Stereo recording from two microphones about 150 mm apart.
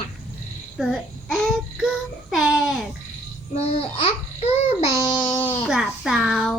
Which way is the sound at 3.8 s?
40° left (ahead or behind).